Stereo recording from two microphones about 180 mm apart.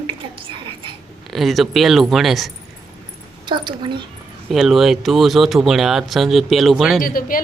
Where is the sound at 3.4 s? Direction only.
25° right (ahead or behind).